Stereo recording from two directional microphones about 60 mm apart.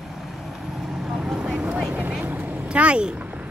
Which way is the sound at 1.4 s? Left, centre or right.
Centre.